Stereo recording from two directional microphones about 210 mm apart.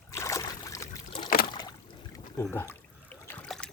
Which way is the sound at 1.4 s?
20° left (ahead or behind).